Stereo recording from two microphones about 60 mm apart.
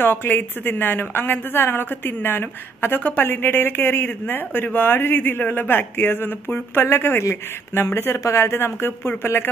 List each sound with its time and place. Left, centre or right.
0.0 s a woman's voice: left